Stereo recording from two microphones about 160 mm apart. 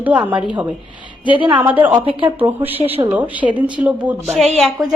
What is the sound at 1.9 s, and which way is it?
Speech, 30° right (ahead or behind).